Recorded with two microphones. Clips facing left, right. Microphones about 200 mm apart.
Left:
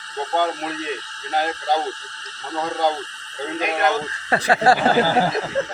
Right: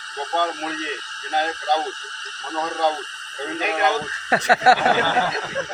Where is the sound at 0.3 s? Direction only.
10° left (ahead or behind).